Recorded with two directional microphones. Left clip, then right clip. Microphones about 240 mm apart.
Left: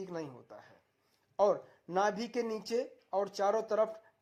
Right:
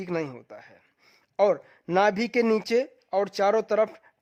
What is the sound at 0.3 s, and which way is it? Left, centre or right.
Speech, right.